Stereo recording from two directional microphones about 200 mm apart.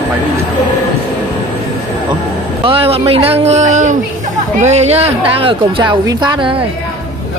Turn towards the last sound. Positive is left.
turn(degrees=-20)  # may be behind; listen again after turning